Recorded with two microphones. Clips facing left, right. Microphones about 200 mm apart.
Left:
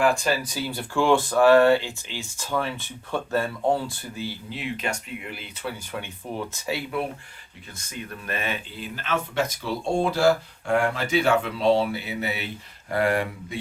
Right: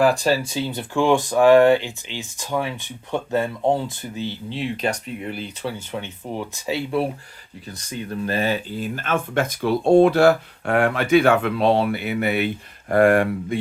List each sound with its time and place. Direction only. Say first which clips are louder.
0.0 s speech: right 4 dB; 35° right (ahead or behind)
5.9 s speech: right 3 dB; 20° right (ahead or behind)
7.8 s speech: right 9 dB; 30° right (ahead or behind); by 13.6 s 55° right (ahead or behind)